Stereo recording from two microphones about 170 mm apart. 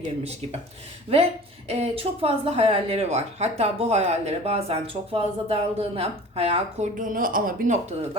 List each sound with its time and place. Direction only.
1.1 s speech: 35° right (ahead or behind)
6.9 s speech: 50° right (ahead or behind)